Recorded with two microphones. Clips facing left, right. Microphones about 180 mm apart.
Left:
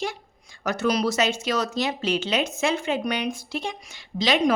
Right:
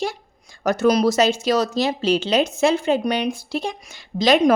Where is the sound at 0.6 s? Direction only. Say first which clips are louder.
Right 6 dB; 40° right (ahead or behind).